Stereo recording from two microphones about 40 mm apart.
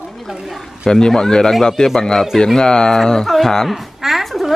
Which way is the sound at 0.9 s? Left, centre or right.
Centre.